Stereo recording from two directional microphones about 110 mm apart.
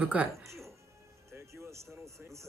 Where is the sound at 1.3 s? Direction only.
25° right (ahead or behind).